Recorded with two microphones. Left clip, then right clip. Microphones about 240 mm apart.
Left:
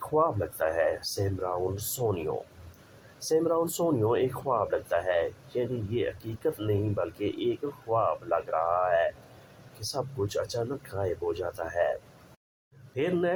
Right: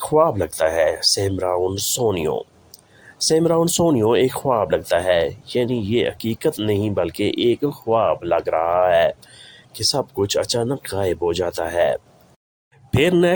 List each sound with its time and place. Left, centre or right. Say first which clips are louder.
0.1 s speech: right 9 dB; right
3.2 s speech: right 9 dB; right
13.0 s speech: right 11 dB; right